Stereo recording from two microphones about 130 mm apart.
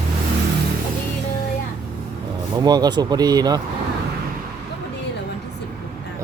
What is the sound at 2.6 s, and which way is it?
Speech, 30° right (ahead or behind).